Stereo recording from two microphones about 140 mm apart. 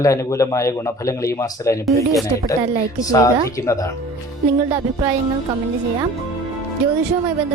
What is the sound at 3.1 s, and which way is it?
Speech, 25° left (ahead or behind).